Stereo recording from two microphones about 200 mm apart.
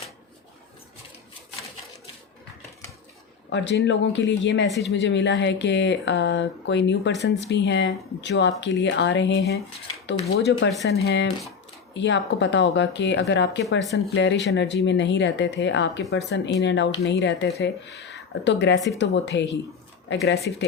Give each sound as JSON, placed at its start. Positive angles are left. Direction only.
{"t": 3.5, "sound": "speech", "side_deg": 60}